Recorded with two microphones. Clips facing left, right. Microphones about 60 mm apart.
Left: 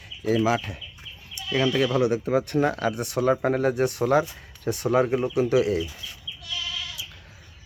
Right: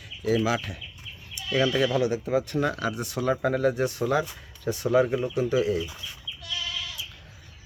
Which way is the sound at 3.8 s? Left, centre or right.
Left.